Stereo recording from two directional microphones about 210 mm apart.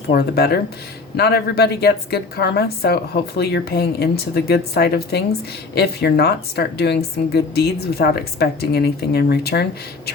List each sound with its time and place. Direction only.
0.1 s a woman's voice: 50° left (ahead or behind)